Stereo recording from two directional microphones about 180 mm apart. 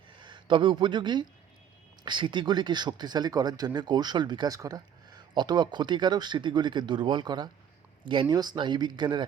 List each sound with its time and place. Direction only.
0.2 s speech: 25° right (ahead or behind)